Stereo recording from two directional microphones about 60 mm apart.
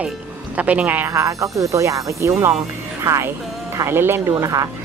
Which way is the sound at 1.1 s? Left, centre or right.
Right.